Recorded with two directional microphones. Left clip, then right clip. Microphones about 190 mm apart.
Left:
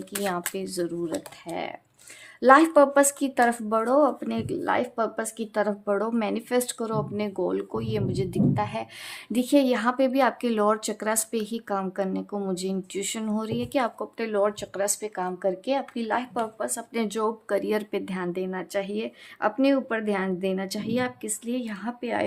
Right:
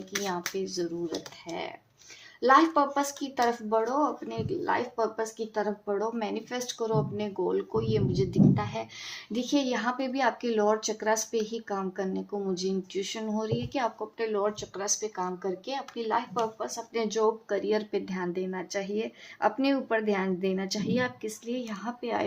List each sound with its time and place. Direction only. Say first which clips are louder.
0.3 s speech: left 5 dB; 50° left (ahead or behind)
2.4 s speech: left 5 dB; 55° left (ahead or behind); by 22.2 s 35° left (ahead or behind)